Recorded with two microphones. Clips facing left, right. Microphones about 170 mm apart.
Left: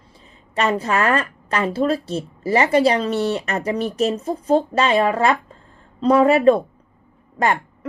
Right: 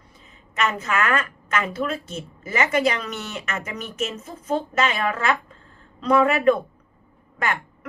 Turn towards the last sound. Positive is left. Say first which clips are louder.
# left 7 dB
turn(degrees=35)  # may be behind; listen again after turning